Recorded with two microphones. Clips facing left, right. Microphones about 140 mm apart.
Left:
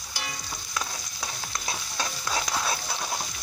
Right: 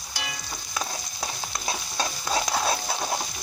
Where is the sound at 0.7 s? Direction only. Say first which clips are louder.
Right 2 dB; 30° right (ahead or behind).